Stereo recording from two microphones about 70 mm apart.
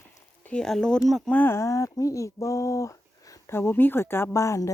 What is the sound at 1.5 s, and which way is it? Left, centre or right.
Speech, left.